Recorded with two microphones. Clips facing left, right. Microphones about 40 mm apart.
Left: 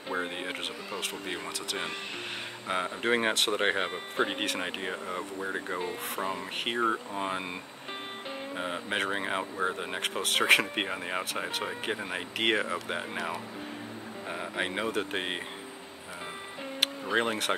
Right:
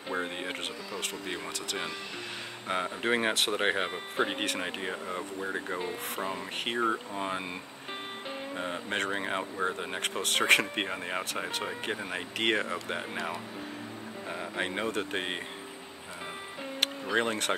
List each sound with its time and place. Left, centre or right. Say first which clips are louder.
0.1 s speech: left 1 dB; centre
2.7 s speech: left 1 dB; centre
8.5 s speech: left 1 dB; centre
14.3 s speech: left 1 dB; centre
16.8 s speech: left 1 dB; centre